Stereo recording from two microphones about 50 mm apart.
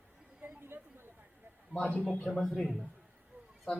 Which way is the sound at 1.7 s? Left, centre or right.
Left.